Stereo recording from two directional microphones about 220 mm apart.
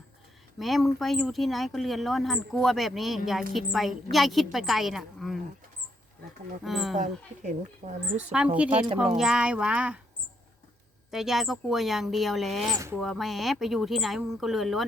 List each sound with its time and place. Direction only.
0.6 s speech: centre (ahead or behind)
6.6 s speech: centre (ahead or behind)
7.0 s speech: 35° right (ahead or behind)
8.2 s speech: 5° right (ahead or behind)
11.1 s speech: centre (ahead or behind)
12.7 s speech: 15° right (ahead or behind)
13.0 s speech: centre (ahead or behind)